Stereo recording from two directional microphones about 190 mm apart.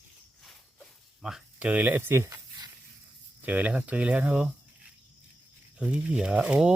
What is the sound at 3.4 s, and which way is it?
Speech, 10° right (ahead or behind).